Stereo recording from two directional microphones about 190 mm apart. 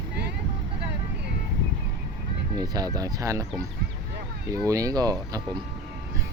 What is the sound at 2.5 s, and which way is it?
Speech, 20° right (ahead or behind).